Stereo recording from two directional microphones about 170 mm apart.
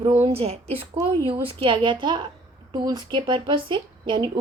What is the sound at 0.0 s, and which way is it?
A woman's voice, 40° right (ahead or behind).